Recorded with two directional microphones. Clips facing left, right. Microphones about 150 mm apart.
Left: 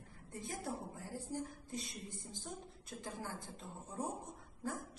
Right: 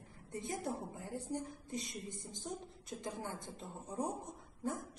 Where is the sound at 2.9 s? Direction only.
25° right (ahead or behind).